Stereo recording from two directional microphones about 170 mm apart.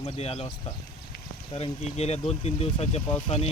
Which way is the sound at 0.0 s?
35° left (ahead or behind).